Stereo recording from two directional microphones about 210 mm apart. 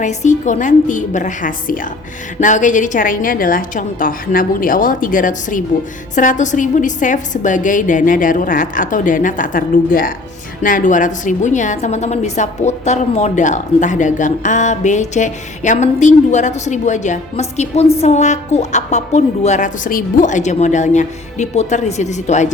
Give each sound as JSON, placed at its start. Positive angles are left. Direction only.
{"t": 0.0, "sound": "a woman's voice", "side_deg": 35}